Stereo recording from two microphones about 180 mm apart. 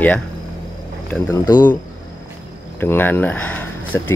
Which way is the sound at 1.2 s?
20° left (ahead or behind).